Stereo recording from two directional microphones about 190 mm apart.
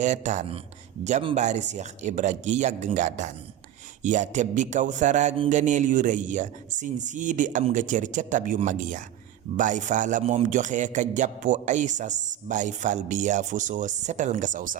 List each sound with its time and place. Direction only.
0.0 s a man's voice: 40° right (ahead or behind)